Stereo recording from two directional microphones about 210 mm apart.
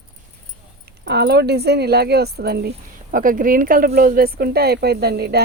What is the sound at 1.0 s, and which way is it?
Speech, 50° right (ahead or behind).